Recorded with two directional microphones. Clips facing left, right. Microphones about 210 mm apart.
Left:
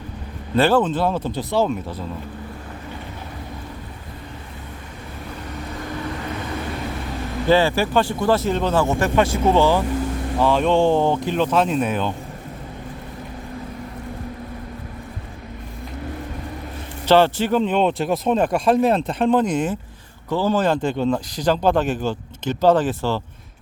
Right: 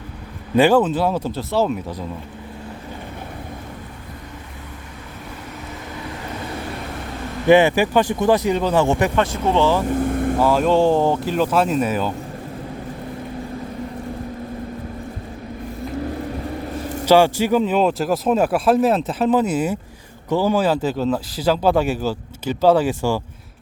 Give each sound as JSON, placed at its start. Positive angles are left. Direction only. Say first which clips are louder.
{"t": 0.5, "sound": "speech", "louder": "right 2 dB", "side_deg": -15}
{"t": 7.4, "sound": "speech", "louder": "right 4 dB", "side_deg": -15}
{"t": 9.1, "sound": "speech", "louder": "left 2 dB", "side_deg": 10}
{"t": 9.9, "sound": "vehicle", "louder": "right 5 dB", "side_deg": -55}
{"t": 10.4, "sound": "speech", "louder": "even", "side_deg": -5}
{"t": 17.1, "sound": "speech", "louder": "right 1 dB", "side_deg": -10}